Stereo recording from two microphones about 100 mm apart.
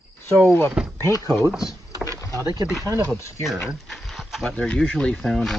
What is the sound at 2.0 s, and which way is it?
Vehicle, 35° right (ahead or behind).